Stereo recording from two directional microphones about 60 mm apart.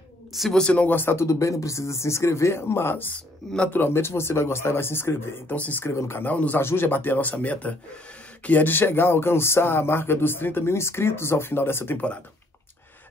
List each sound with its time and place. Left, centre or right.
0.5 s speech: centre
0.8 s speech: left
1.2 s speech: left
5.6 s a man's voice: left
5.9 s speech: left
6.2 s a man's voice: left
6.6 s speech: left